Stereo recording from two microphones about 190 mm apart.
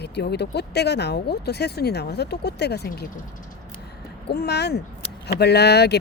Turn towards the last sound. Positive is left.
turn(degrees=60)  # may be behind; listen again after turning